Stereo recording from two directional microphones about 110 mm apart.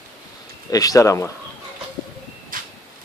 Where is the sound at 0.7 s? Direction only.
35° left (ahead or behind).